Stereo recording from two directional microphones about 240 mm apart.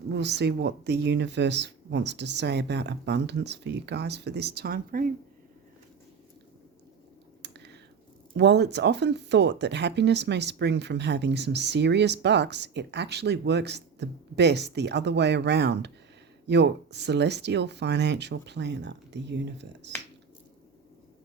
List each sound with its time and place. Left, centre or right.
0.1 s speech: right
7.4 s a sound: right
8.4 s speech: right